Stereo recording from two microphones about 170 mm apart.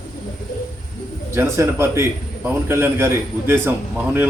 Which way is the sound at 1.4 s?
15° right (ahead or behind).